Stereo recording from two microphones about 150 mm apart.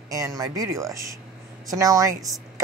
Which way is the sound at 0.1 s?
20° right (ahead or behind).